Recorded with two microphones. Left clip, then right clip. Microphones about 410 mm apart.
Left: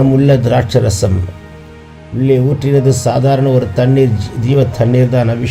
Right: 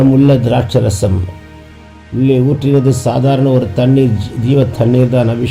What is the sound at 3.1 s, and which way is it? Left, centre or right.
Speech, centre.